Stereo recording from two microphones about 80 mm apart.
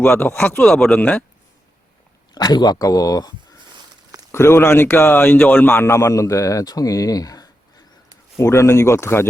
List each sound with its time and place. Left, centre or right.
0.0 s speech: left
0.6 s speech: centre
0.9 s speech: left
2.3 s speech: left
4.3 s a man's voice: left
8.4 s a man's voice: left